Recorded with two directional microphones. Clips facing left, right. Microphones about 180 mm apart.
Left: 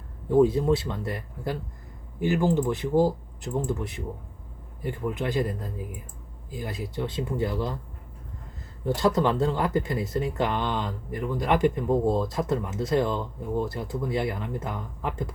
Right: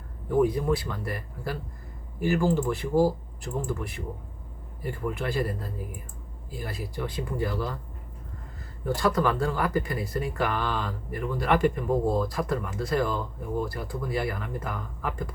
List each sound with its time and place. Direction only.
0.3 s speech: 25° left (ahead or behind)
8.8 s speech: 25° left (ahead or behind)